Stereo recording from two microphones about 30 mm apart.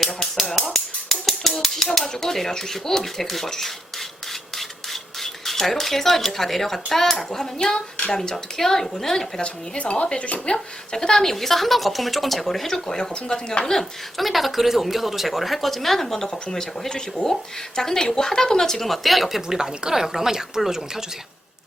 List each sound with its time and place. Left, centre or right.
0.0 s a sound: centre
1.9 s speech: centre
5.2 s speech: centre
9.4 s speech: left
10.9 s speech: centre
13.0 s speech: left
14.2 s speech: centre
16.1 s speech: left
18.9 s speech: centre
19.5 s speech: right